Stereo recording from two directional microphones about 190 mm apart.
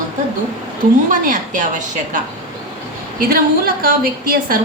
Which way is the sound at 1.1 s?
45° right (ahead or behind).